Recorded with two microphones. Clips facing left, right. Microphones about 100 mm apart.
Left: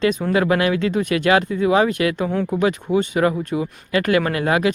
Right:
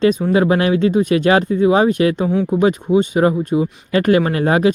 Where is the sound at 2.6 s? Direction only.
25° right (ahead or behind).